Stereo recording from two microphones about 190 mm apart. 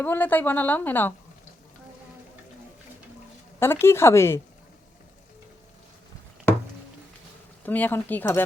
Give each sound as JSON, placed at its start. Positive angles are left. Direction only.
{"t": 0.0, "sound": "a woman's voice", "side_deg": 10}
{"t": 3.6, "sound": "a woman's voice", "side_deg": 15}
{"t": 7.6, "sound": "a woman's voice", "side_deg": 10}